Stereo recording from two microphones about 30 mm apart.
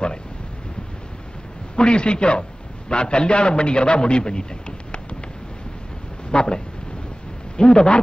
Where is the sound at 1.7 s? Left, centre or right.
Left.